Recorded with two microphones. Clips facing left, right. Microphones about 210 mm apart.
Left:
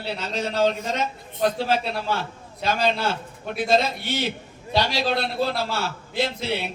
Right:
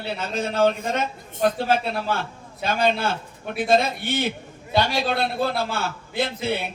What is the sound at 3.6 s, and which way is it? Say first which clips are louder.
A man's voice: right 1 dB; 50° right (ahead or behind).